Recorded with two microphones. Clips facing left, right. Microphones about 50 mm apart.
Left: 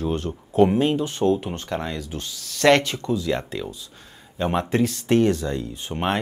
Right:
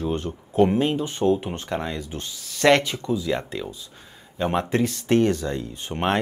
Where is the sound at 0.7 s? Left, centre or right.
Centre.